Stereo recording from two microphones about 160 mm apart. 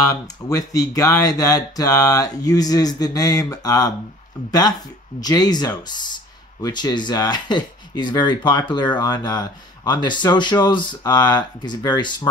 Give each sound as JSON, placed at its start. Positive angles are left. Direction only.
{"t": 0.0, "sound": "speech", "side_deg": 20}